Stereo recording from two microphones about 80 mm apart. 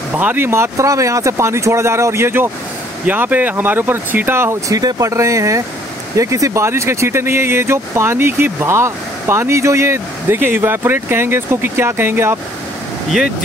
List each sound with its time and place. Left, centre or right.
0.1 s speech: right
4.6 s speech: right